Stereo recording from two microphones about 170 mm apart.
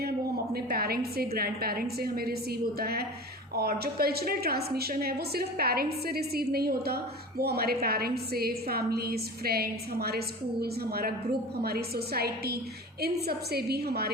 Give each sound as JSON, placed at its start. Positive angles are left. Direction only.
{"t": 0.5, "sound": "a woman's voice", "side_deg": -65}